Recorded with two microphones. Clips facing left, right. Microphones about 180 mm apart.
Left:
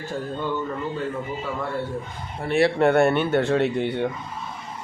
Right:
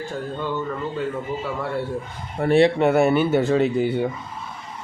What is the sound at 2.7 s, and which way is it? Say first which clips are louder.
Speech: right 1 dB; centre (ahead or behind).